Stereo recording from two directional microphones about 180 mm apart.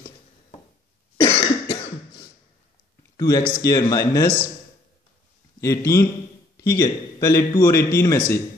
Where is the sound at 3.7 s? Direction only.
20° left (ahead or behind).